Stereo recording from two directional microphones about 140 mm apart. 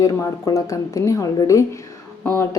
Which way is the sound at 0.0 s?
25° left (ahead or behind).